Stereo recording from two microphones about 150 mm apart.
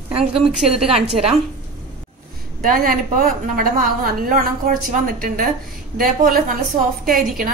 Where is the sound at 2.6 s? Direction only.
70° right (ahead or behind).